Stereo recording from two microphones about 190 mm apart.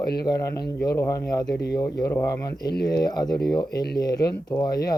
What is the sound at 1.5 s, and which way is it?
Speech, 60° left (ahead or behind).